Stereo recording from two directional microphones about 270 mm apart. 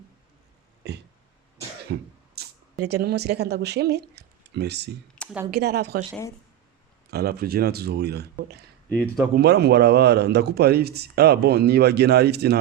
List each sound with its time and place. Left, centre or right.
1.9 s cough: right
2.8 s speech: right
5.1 s a sound: centre
5.5 s speech: right
6.1 s speech: centre
7.1 s speech: right
9.0 s speech: centre
9.3 s speech: right